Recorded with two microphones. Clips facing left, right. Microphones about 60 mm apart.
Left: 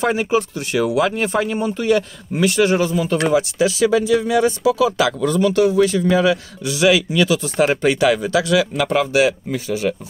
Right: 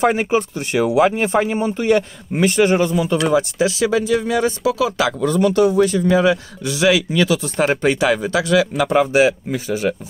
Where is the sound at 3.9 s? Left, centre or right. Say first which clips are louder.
Left 2 dB; centre.